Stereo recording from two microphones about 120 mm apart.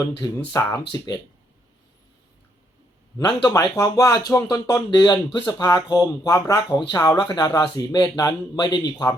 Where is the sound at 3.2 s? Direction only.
40° left (ahead or behind).